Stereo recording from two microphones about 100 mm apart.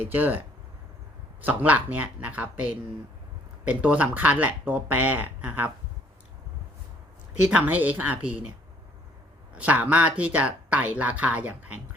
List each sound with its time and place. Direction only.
0.0 s speech: 20° right (ahead or behind)
1.5 s speech: 15° right (ahead or behind)
7.5 s speech: 15° right (ahead or behind)
9.6 s speech: 15° right (ahead or behind)